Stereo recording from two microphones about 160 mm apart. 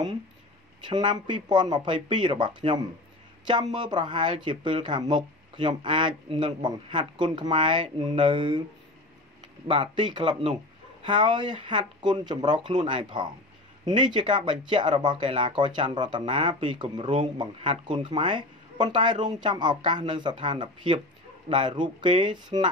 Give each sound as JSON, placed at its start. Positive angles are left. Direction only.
{"t": 0.8, "sound": "speech", "side_deg": -25}
{"t": 9.7, "sound": "speech", "side_deg": -30}